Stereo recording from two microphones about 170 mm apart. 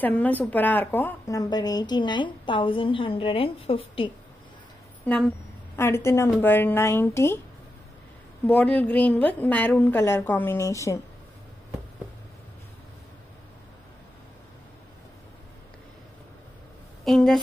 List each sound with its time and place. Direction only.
0.0 s a woman's voice: 10° left (ahead or behind); by 4.1 s 30° left (ahead or behind)
5.0 s a woman's voice: 10° left (ahead or behind)
8.5 s a woman's voice: 10° left (ahead or behind)
17.0 s speech: centre (ahead or behind)